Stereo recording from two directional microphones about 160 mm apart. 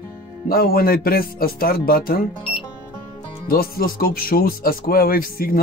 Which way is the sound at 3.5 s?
70° left (ahead or behind).